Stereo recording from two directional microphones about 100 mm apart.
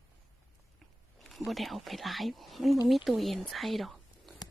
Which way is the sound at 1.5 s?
Centre (ahead or behind).